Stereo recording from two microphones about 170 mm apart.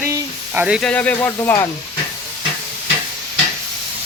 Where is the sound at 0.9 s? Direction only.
10° left (ahead or behind).